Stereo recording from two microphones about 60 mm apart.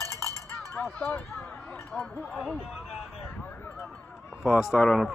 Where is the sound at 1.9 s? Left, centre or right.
Centre.